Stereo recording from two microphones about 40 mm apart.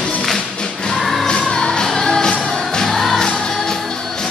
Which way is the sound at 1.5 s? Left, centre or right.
Centre.